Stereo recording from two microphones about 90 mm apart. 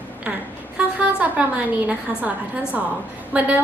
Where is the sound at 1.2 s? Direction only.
15° right (ahead or behind).